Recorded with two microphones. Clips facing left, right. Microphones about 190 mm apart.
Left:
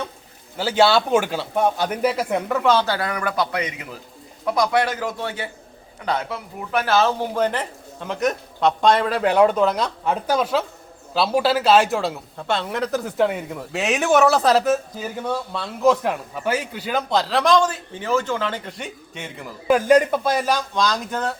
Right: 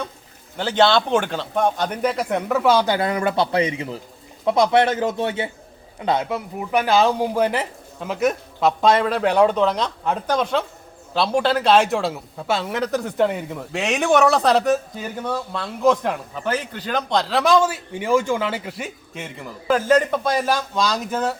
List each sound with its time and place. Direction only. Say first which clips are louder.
0.5 s a man's voice: even; 5° left (ahead or behind)
19.6 s speech: left 2 dB; 10° left (ahead or behind); by 21.3 s 5° right (ahead or behind)